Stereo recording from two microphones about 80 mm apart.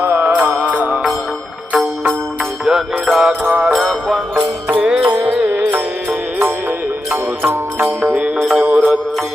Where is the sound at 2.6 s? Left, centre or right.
Centre.